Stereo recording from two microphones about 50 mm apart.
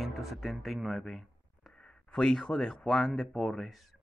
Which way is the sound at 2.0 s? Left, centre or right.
Left.